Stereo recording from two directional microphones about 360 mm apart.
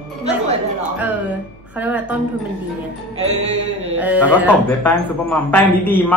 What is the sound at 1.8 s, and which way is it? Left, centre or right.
Speech, centre.